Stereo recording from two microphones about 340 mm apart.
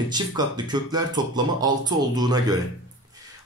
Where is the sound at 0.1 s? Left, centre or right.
Centre.